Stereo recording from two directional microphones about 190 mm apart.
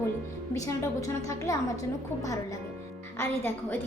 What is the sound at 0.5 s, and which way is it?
A woman's voice, 15° left (ahead or behind).